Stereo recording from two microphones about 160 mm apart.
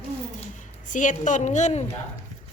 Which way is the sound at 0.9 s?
55° left (ahead or behind).